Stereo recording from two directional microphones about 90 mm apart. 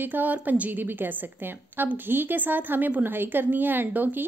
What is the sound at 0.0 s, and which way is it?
A woman's voice, 20° right (ahead or behind).